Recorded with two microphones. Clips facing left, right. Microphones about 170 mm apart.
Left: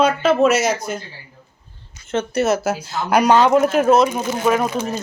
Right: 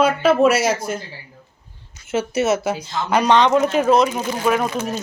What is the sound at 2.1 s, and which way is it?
Speech, centre (ahead or behind).